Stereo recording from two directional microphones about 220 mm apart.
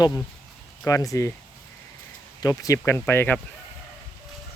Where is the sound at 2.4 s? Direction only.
15° left (ahead or behind).